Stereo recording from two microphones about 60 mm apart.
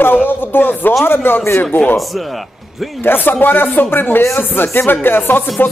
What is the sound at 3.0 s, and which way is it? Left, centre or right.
Speech, left.